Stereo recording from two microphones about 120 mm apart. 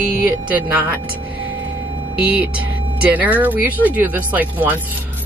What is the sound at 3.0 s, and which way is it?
Speech, 15° right (ahead or behind).